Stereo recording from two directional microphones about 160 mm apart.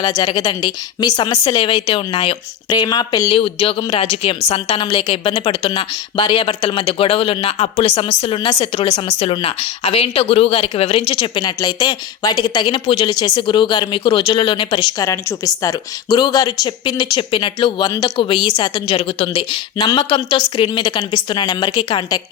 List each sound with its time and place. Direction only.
0.0 s a woman's voice: 25° left (ahead or behind); by 8.0 s 40° left (ahead or behind)
8.2 s a woman's voice: 30° left (ahead or behind)